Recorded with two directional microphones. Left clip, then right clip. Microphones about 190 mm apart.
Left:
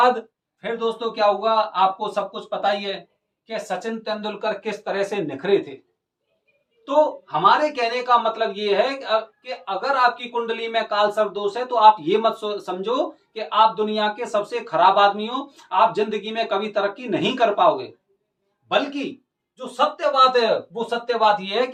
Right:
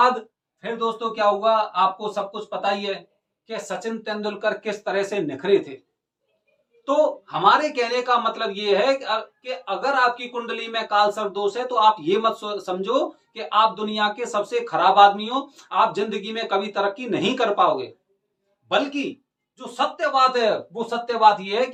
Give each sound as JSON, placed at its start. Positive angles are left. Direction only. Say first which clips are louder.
{"t": 0.6, "sound": "a man's voice", "louder": "left 1 dB", "side_deg": 15}
{"t": 6.8, "sound": "a man's voice", "louder": "left 1 dB", "side_deg": -15}
{"t": 19.5, "sound": "speech", "louder": "left 2 dB", "side_deg": -5}